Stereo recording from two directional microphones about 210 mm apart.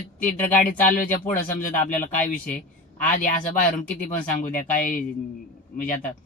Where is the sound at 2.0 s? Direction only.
5° left (ahead or behind).